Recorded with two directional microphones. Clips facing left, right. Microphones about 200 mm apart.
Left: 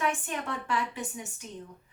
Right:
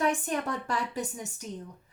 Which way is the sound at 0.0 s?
40° right (ahead or behind).